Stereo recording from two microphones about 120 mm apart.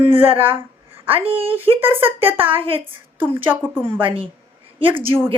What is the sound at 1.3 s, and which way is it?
Speech, 50° right (ahead or behind).